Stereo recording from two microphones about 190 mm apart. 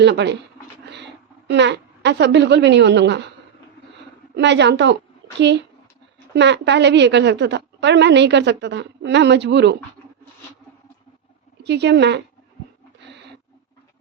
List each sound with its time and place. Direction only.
0.0 s a woman's voice: 65° right (ahead or behind)
4.4 s a woman's voice: 65° right (ahead or behind)
11.6 s a woman's voice: 65° right (ahead or behind)